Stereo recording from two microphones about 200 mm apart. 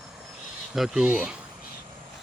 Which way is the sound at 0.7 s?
Centre (ahead or behind).